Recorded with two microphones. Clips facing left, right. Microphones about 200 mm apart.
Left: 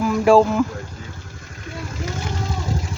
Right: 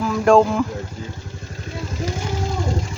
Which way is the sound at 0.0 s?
5° left (ahead or behind).